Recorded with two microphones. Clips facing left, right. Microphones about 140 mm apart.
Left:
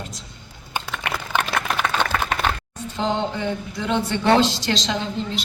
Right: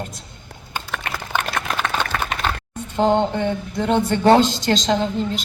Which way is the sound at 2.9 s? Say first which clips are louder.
Right 6 dB; 55° right (ahead or behind).